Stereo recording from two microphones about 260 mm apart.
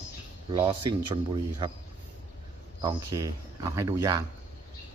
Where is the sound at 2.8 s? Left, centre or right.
Centre.